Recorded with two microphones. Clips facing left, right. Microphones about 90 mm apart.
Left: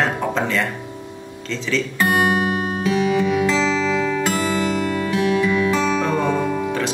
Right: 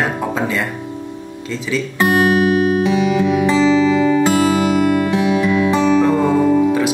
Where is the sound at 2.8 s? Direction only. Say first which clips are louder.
Right 3 dB; 20° right (ahead or behind).